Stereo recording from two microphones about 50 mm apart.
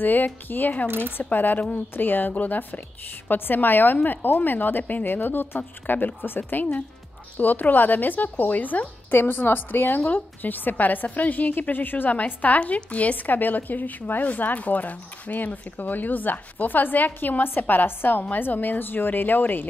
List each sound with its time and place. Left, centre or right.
0.0 s a woman's voice: left
0.8 s speech: right
1.1 s a woman's voice: left
9.2 s a woman's voice: left